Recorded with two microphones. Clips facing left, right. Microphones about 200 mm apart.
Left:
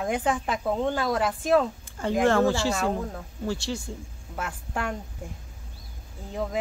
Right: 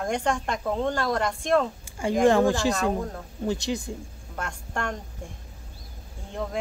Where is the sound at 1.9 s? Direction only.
10° right (ahead or behind).